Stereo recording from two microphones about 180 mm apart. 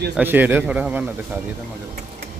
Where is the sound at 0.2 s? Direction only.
10° right (ahead or behind).